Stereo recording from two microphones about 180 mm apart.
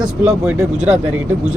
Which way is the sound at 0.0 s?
5° right (ahead or behind).